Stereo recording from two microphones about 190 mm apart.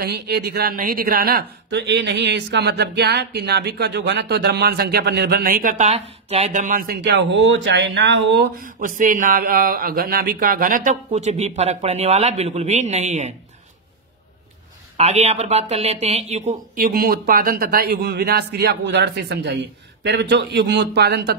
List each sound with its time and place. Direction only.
0.0 s speech: 55° right (ahead or behind)
8.5 s speech: 45° right (ahead or behind)
15.0 s speech: 35° right (ahead or behind); by 21.2 s 60° right (ahead or behind)